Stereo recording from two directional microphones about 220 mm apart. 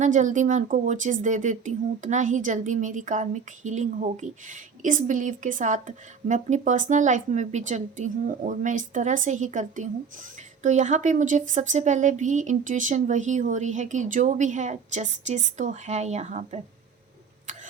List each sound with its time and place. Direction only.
0.0 s speech: 35° right (ahead or behind)